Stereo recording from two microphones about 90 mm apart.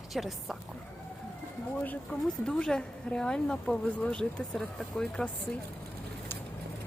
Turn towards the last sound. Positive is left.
turn(degrees=10)  # may be behind; listen again after turning